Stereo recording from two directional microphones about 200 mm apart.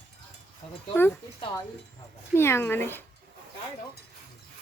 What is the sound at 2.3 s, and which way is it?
Speech, 10° left (ahead or behind).